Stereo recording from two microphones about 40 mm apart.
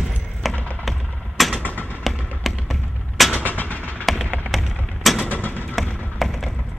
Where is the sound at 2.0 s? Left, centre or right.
Centre.